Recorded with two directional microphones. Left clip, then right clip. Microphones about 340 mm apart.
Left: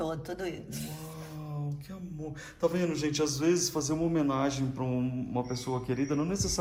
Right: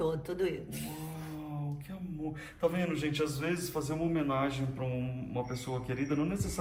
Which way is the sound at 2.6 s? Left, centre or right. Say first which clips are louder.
Left 3 dB; centre.